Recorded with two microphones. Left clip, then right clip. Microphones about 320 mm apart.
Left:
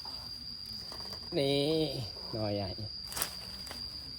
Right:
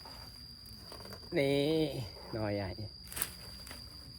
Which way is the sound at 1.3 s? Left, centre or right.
Right.